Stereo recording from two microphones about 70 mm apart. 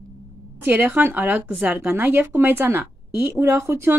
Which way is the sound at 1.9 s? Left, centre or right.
Right.